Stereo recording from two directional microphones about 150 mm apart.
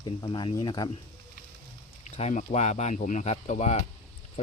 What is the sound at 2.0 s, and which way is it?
Speech, 50° left (ahead or behind).